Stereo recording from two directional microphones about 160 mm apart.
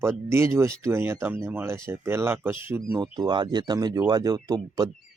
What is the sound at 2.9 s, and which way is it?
Speech, 25° right (ahead or behind).